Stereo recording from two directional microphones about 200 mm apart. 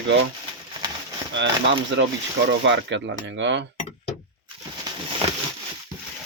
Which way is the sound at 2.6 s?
65° right (ahead or behind).